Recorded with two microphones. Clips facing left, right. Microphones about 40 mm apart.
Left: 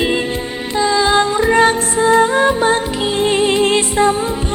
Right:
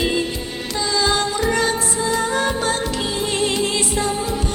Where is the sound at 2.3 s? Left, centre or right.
Left.